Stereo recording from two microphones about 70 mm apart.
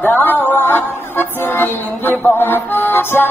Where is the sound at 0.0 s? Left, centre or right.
Left.